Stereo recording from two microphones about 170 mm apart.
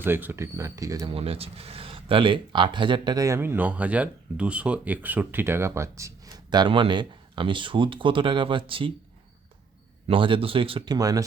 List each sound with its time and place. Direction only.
0.0 s speech: 10° right (ahead or behind)
1.1 s speech: 35° right (ahead or behind)
10.1 s speech: 30° right (ahead or behind)